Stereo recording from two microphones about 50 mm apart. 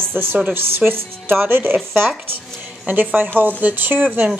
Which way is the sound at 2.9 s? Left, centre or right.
Right.